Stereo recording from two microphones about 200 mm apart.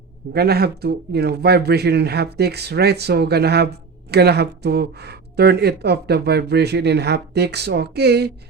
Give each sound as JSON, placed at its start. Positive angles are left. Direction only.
{"t": 0.3, "sound": "speech", "side_deg": -50}